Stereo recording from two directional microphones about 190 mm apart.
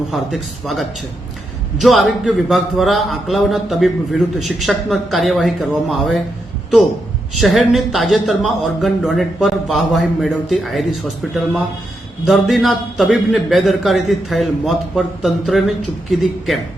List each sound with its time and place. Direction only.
0.1 s a man's voice: centre (ahead or behind)
7.3 s a man's voice: centre (ahead or behind)
12.2 s a man's voice: centre (ahead or behind)